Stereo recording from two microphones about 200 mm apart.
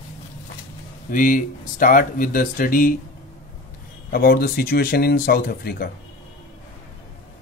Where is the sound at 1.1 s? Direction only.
40° left (ahead or behind).